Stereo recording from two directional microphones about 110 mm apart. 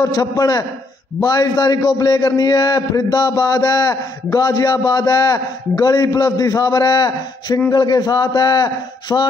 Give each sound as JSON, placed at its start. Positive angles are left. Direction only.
{"t": 0.0, "sound": "a man's voice", "side_deg": 35}